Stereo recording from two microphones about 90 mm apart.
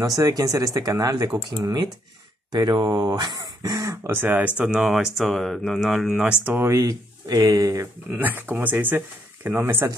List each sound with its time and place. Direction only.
0.2 s speech: 45° right (ahead or behind); by 4.8 s 15° right (ahead or behind)
4.8 s speech: 5° right (ahead or behind)
6.2 s speech: 15° right (ahead or behind)
6.6 s speech: 40° right (ahead or behind)
7.7 s speech: 25° right (ahead or behind)